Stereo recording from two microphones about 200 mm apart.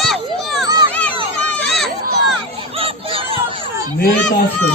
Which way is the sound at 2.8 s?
25° right (ahead or behind).